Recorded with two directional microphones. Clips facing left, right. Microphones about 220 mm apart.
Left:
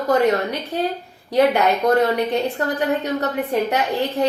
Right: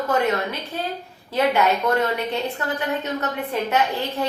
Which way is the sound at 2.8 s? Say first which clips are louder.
Left 5 dB; 35° left (ahead or behind).